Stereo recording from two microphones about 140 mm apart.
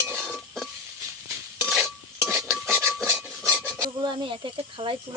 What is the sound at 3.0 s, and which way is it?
Rub, 10° right (ahead or behind).